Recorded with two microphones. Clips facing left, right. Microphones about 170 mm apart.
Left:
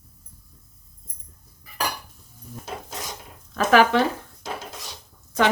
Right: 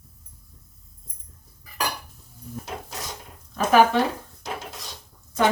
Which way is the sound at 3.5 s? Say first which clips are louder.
Even; 90° left.